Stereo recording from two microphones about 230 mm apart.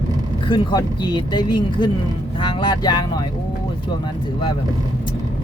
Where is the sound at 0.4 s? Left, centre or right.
Centre.